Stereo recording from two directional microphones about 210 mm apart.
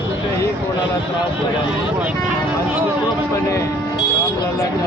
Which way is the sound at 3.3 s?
15° left (ahead or behind).